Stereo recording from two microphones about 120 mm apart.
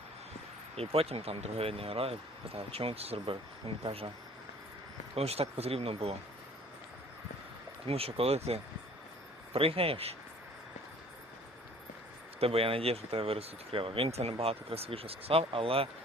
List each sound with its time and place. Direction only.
0.8 s speech: 55° right (ahead or behind)
5.1 s speech: 60° right (ahead or behind)
7.9 s speech: 55° right (ahead or behind)
12.4 s speech: 55° right (ahead or behind)